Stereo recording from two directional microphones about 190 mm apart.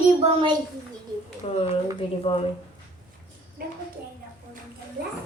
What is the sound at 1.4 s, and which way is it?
Speech, 30° left (ahead or behind).